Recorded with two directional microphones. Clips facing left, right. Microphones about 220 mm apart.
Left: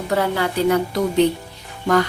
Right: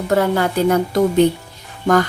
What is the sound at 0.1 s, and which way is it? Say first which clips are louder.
A woman's voice: right 4 dB; 50° right (ahead or behind).